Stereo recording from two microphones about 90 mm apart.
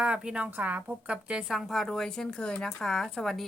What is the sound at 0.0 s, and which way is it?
A woman's voice, 10° right (ahead or behind).